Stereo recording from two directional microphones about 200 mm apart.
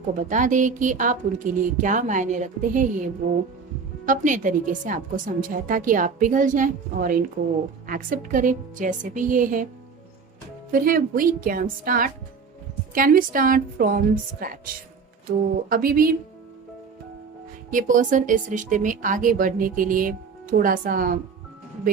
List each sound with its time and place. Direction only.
0.2 s speech: 40° right (ahead or behind)
4.0 s speech: 40° right (ahead or behind)
10.7 s a woman's voice: 45° right (ahead or behind)
15.7 s a woman's voice: 45° right (ahead or behind)
17.7 s speech: 40° right (ahead or behind)